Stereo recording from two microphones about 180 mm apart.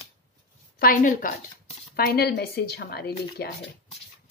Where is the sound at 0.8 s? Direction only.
50° left (ahead or behind).